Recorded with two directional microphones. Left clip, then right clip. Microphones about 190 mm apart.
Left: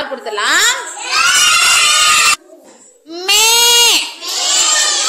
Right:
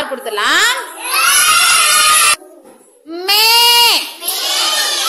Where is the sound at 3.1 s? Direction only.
15° right (ahead or behind).